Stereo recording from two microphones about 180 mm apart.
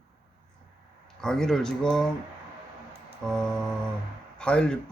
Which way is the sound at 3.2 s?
5° left (ahead or behind).